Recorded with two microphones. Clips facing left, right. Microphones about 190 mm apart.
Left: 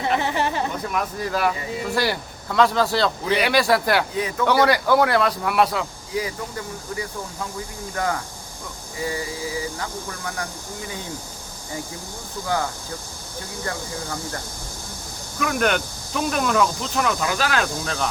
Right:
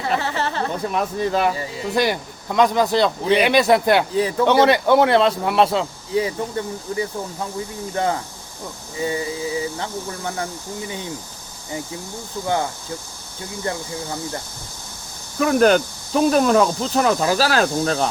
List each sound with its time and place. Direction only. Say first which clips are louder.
0.0 s speech: even; 15° left (ahead or behind)
0.9 s speech: right 5 dB; 25° right (ahead or behind)
15.4 s speech: right 7 dB; 35° right (ahead or behind)